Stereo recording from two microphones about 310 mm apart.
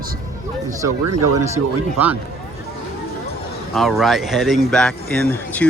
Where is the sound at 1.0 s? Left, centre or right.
Right.